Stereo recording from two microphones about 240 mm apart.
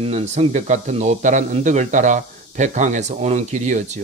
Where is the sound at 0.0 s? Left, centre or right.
Right.